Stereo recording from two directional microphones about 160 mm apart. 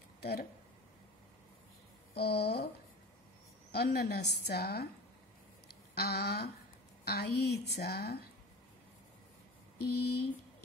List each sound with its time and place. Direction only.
0.2 s speech: 80° left
2.1 s speech: 90° left
3.7 s a woman's voice: 80° left
5.9 s a woman's voice: 80° left
9.8 s a woman's voice: 85° left